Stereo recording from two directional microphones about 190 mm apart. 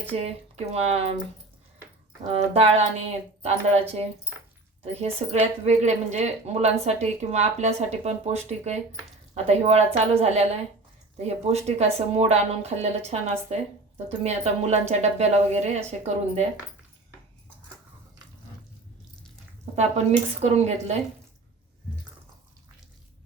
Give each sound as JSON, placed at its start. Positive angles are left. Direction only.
{"t": 0.1, "sound": "a woman's voice", "side_deg": -35}
{"t": 2.2, "sound": "a woman's voice", "side_deg": -30}
{"t": 4.9, "sound": "a woman's voice", "side_deg": -35}
{"t": 19.7, "sound": "a woman's voice", "side_deg": -35}